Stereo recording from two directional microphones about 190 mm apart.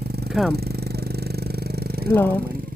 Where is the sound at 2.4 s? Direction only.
50° right (ahead or behind).